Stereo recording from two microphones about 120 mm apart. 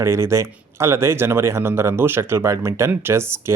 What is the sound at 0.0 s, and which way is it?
Speech, 25° right (ahead or behind).